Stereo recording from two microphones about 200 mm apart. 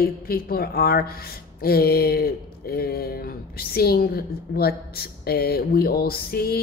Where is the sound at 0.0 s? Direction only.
50° left (ahead or behind).